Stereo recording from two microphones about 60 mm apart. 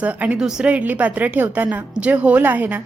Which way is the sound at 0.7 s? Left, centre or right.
Right.